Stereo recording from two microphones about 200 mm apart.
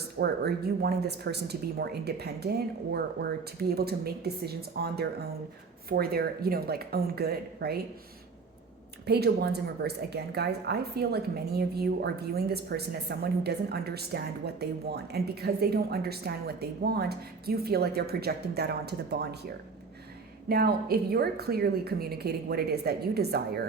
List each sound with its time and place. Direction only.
0.2 s speech: 50° right (ahead or behind)
9.0 s speech: 55° right (ahead or behind)
20.5 s speech: 50° right (ahead or behind)